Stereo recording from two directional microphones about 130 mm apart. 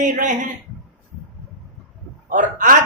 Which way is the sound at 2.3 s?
80° right.